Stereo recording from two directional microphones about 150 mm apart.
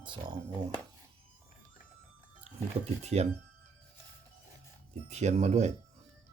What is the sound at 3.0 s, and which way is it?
Speech, 45° right (ahead or behind).